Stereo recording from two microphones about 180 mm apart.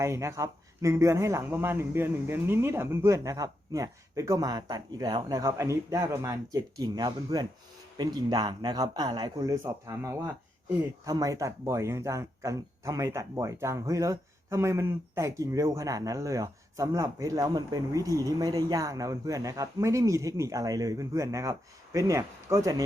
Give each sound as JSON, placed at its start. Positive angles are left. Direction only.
{"t": 0.0, "sound": "speech", "side_deg": -15}